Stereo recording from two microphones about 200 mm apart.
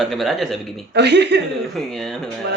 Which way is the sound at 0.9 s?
60° right (ahead or behind).